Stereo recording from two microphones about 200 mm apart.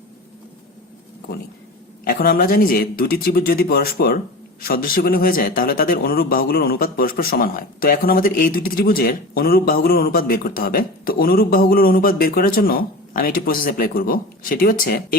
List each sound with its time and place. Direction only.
2.0 s a man's voice: 45° left (ahead or behind)